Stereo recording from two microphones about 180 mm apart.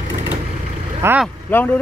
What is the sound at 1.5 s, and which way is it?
Speech, 10° left (ahead or behind).